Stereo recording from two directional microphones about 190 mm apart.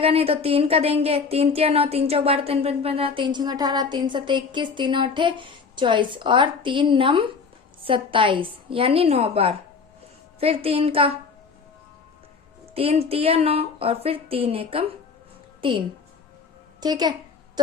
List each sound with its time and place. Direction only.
0.0 s speech: 30° right (ahead or behind)
12.7 s speech: 30° right (ahead or behind)
16.8 s a sound: 20° right (ahead or behind)